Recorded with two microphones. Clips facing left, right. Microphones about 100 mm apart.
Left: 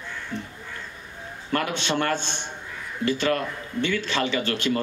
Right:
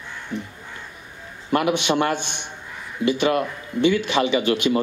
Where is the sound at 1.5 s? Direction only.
15° right (ahead or behind).